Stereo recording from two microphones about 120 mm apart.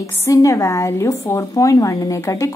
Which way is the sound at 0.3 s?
25° left (ahead or behind).